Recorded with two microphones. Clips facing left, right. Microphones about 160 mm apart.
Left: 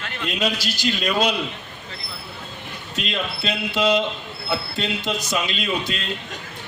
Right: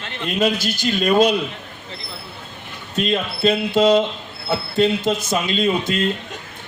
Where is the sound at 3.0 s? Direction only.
45° right (ahead or behind).